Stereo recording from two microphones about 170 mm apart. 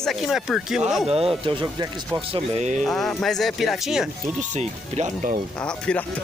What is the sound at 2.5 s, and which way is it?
Speech, 40° right (ahead or behind).